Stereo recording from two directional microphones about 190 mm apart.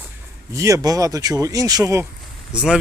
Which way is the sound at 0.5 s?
15° right (ahead or behind).